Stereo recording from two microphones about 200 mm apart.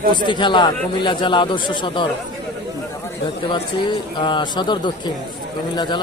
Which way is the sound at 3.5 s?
25° left (ahead or behind).